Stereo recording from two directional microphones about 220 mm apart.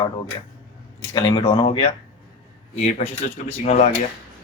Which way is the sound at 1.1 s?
20° left (ahead or behind).